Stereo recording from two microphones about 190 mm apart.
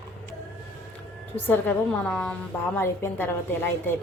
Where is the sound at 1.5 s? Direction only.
10° left (ahead or behind).